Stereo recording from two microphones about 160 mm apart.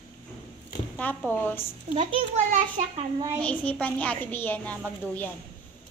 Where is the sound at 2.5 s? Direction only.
50° right (ahead or behind).